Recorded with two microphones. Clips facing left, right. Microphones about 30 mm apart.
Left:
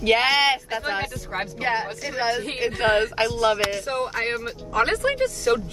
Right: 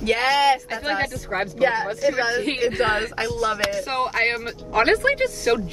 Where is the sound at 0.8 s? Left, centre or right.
Right.